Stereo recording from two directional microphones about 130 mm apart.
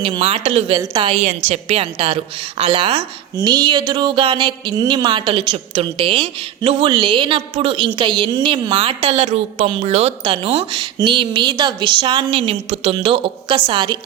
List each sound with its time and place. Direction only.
0.1 s a woman's voice: 40° right (ahead or behind)
0.8 s speech: 35° right (ahead or behind)
1.1 s a woman's voice: 55° right (ahead or behind)
3.4 s a woman's voice: 35° right (ahead or behind)